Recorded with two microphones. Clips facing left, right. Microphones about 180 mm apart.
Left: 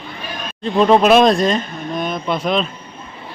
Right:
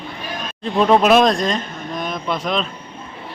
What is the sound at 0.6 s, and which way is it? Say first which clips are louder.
Speech: left 2 dB; centre (ahead or behind).